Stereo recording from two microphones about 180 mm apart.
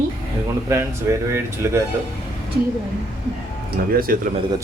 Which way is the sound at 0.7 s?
15° right (ahead or behind).